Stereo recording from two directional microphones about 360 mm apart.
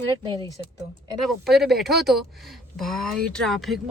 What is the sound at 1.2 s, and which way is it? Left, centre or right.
Speech, centre.